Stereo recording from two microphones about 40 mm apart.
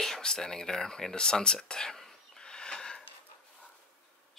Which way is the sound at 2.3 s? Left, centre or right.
Left.